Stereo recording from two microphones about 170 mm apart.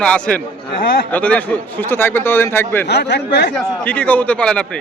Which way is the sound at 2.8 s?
85° left.